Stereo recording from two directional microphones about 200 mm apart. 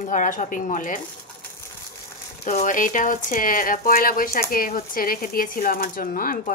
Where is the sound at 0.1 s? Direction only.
40° left (ahead or behind).